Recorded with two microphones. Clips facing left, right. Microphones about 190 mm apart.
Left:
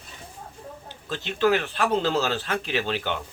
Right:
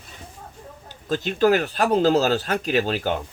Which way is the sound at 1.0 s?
40° right (ahead or behind).